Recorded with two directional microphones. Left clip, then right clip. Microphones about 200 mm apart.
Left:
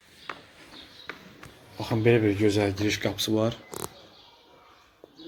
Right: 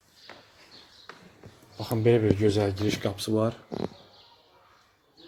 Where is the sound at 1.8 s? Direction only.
20° right (ahead or behind).